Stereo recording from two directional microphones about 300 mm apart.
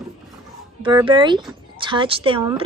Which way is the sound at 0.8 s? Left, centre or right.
Centre.